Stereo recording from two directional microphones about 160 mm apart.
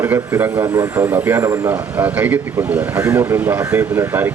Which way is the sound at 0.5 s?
20° right (ahead or behind).